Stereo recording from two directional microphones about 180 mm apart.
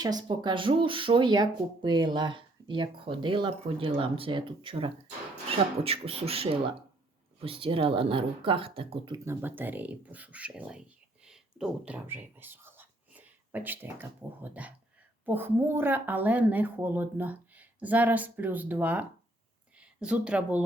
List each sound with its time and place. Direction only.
0.0 s speech: 20° right (ahead or behind)
9.2 s a woman's voice: 15° right (ahead or behind)